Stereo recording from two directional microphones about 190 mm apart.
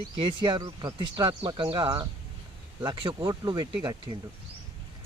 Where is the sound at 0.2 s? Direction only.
25° right (ahead or behind).